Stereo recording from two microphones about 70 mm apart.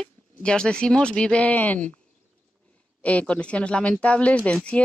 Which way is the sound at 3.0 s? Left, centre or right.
Centre.